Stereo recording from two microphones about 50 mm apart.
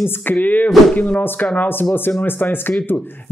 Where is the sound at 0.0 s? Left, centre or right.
Left.